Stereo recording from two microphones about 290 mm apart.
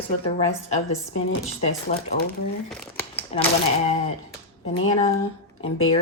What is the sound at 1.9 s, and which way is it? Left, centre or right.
Speech, left.